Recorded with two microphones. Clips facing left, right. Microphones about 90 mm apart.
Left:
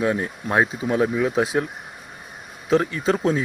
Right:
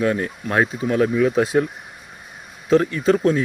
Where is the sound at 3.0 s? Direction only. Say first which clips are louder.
Right 4 dB; 20° left (ahead or behind).